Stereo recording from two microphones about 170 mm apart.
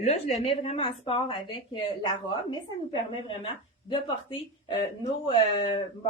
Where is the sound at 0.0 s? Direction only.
40° left (ahead or behind).